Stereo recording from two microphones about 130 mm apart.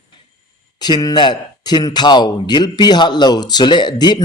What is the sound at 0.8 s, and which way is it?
A man's voice, 30° left (ahead or behind).